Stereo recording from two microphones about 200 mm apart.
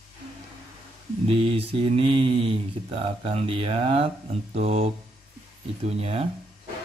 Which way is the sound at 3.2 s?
30° right (ahead or behind).